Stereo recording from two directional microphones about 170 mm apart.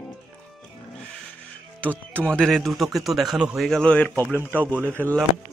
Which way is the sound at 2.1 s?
5° left (ahead or behind).